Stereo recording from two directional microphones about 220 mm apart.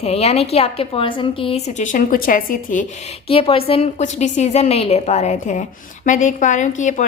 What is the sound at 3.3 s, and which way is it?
Speech, 25° left (ahead or behind).